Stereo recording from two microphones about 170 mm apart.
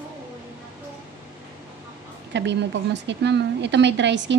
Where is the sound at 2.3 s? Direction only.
90° right.